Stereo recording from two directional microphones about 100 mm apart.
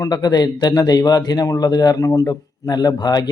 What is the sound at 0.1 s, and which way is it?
Speech, 45° left (ahead or behind).